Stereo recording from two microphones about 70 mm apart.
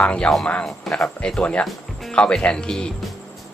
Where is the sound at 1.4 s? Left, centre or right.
Centre.